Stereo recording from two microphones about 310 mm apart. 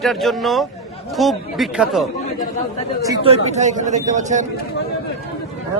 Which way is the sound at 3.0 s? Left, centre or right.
Centre.